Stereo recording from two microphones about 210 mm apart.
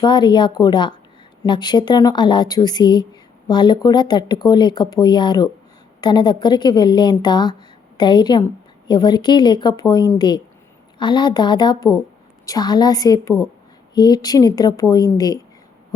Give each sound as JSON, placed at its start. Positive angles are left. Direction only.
{"t": 0.0, "sound": "a woman's voice", "side_deg": 20}